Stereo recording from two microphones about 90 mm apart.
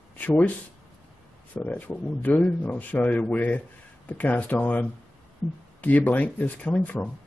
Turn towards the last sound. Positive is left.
turn(degrees=15)  # may be behind; listen again after turning